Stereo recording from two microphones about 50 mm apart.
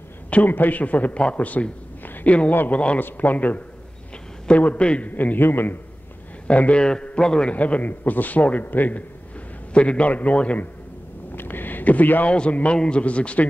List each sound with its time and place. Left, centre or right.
0.3 s a man's voice: left
3.0 s a man's voice: left
5.1 s a man's voice: left
6.4 s speech: left
6.8 s a man's voice: centre
7.5 s a man's voice: left
9.8 s a man's voice: left
11.3 s a sound: left
12.4 s a man's voice: left